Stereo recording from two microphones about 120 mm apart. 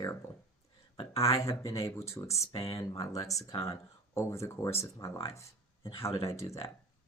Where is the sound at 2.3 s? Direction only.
55° left (ahead or behind).